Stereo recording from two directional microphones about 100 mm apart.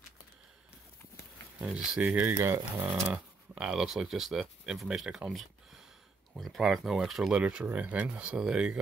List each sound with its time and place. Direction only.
1.9 s speech: 10° right (ahead or behind)
2.8 s speech: 10° right (ahead or behind)
5.3 s a sound: centre (ahead or behind)
6.3 s speech: centre (ahead or behind)